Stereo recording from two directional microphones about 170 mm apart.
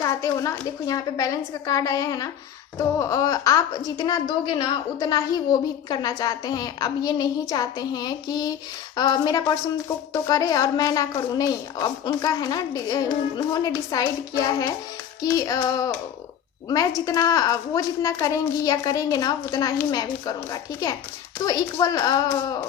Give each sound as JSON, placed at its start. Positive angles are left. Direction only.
{"t": 0.0, "sound": "a sound", "side_deg": 20}
{"t": 0.9, "sound": "a woman's voice", "side_deg": 20}
{"t": 17.1, "sound": "a woman's voice", "side_deg": 20}